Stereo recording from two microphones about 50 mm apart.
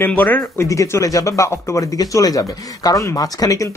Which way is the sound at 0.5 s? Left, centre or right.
Left.